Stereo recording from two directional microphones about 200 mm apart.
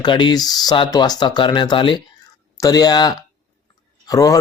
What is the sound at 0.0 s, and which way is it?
Speech, 20° left (ahead or behind).